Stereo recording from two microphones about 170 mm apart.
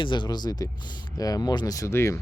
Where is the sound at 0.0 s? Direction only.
25° left (ahead or behind).